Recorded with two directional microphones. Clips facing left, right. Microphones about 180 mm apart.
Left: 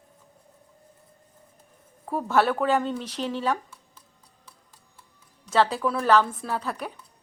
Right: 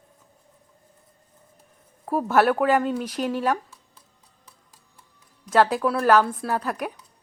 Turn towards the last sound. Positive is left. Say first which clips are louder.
# right 3 dB
turn(degrees=-10)  # may be behind; listen again after turning